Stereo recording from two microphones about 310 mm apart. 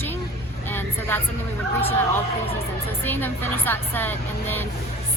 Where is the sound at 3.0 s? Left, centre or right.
Centre.